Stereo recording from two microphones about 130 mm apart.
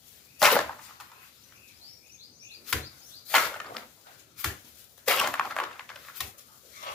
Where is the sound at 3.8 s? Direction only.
5° left (ahead or behind).